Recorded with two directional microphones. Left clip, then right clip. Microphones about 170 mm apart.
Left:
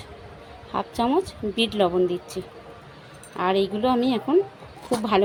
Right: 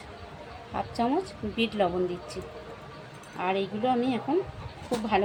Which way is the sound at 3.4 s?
75° left (ahead or behind).